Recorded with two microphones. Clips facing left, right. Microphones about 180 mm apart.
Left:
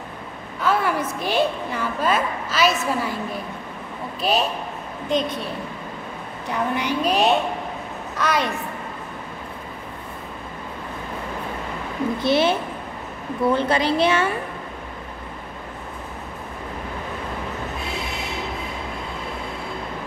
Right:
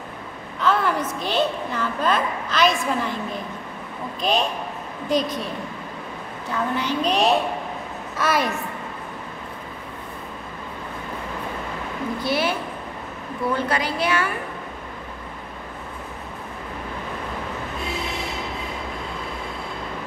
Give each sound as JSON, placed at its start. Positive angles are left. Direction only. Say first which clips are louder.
{"t": 0.6, "sound": "a woman's voice", "louder": "even", "side_deg": 10}
{"t": 4.2, "sound": "a woman's voice", "louder": "left 1 dB", "side_deg": 5}
{"t": 6.5, "sound": "a woman's voice", "louder": "left 1 dB", "side_deg": 15}
{"t": 12.2, "sound": "a woman's voice", "louder": "left 5 dB", "side_deg": 25}
{"t": 13.6, "sound": "a woman's voice", "louder": "left 4 dB", "side_deg": 25}